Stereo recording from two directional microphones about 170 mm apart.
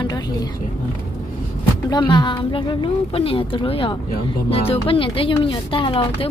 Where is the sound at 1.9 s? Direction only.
25° left (ahead or behind).